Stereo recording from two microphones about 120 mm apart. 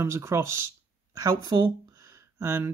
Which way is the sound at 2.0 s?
20° right (ahead or behind).